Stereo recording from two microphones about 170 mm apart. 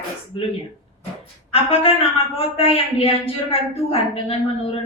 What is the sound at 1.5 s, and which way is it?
A man's voice, 35° left (ahead or behind).